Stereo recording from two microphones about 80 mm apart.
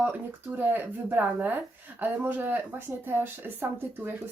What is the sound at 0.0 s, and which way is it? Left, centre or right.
Speech, right.